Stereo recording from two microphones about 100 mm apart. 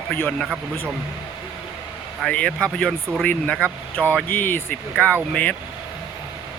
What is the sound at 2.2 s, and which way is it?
Speech, 10° left (ahead or behind).